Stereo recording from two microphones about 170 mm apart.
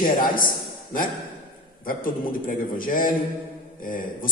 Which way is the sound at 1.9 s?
55° left (ahead or behind).